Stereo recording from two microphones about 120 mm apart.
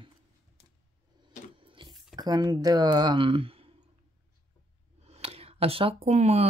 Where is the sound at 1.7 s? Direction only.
45° right (ahead or behind).